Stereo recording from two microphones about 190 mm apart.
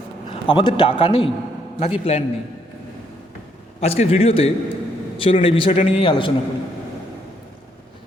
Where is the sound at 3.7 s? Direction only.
30° left (ahead or behind).